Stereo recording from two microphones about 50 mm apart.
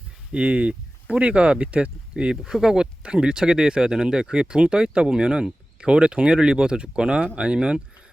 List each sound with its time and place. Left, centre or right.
0.3 s speech: right